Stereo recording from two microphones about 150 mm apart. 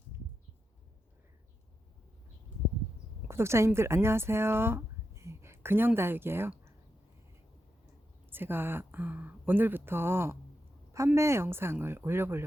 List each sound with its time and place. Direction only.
3.2 s speech: 15° right (ahead or behind)
8.3 s speech: 15° right (ahead or behind)